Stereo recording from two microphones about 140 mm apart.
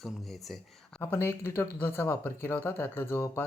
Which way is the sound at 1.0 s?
15° left (ahead or behind).